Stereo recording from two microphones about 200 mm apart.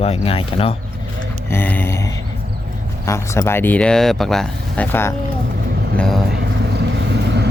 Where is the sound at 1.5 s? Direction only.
10° left (ahead or behind).